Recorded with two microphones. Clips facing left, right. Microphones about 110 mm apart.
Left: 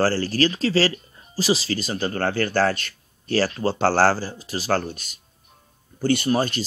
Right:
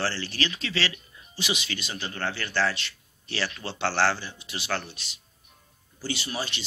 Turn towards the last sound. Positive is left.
turn(degrees=45)  # may be behind; listen again after turning